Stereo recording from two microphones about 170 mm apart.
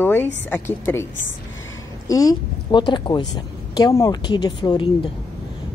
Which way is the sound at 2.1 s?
20° left (ahead or behind).